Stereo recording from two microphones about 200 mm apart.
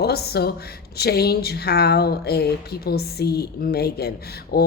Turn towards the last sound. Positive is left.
turn(degrees=50)  # may be behind; listen again after turning